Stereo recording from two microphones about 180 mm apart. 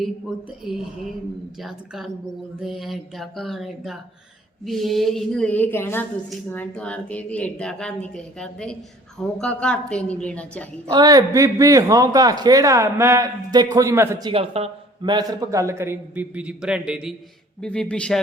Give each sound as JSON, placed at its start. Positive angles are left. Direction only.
{"t": 0.0, "sound": "a woman's voice", "side_deg": 0}
{"t": 10.8, "sound": "a man's voice", "side_deg": -20}
{"t": 14.3, "sound": "a man's voice", "side_deg": -30}